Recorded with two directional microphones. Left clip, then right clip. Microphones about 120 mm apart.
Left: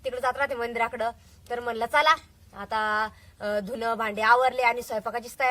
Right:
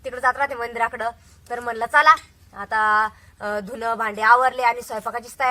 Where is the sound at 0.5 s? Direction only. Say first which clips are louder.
Right 3 dB; 15° left (ahead or behind).